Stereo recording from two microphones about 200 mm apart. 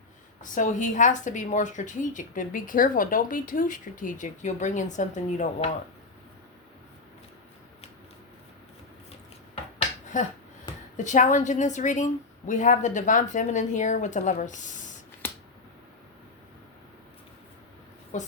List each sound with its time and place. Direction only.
0.5 s a woman's voice: 40° left (ahead or behind)
9.7 s finger snapping: 40° left (ahead or behind)
10.9 s a woman's voice: 35° left (ahead or behind)
18.1 s a woman's voice: 35° left (ahead or behind)